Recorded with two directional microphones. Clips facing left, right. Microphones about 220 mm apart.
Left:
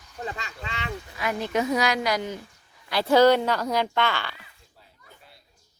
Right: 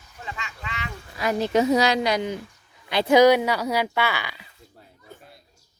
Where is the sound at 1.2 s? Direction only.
35° right (ahead or behind); by 4.4 s 10° right (ahead or behind).